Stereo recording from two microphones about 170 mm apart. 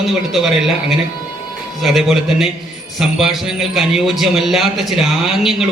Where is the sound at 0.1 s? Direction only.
Centre (ahead or behind).